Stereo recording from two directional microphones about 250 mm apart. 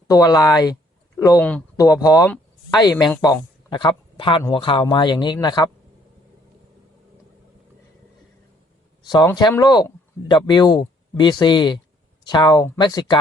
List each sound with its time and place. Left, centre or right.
0.1 s speech: centre
9.0 s speech: centre